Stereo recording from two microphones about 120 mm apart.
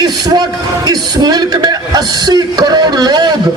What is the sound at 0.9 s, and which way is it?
A man's voice, 35° right (ahead or behind).